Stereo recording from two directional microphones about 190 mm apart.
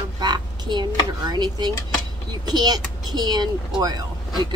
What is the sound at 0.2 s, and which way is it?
Speech, 25° right (ahead or behind).